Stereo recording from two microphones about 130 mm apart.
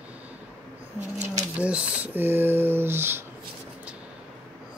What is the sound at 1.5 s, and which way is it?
Speech, 10° right (ahead or behind).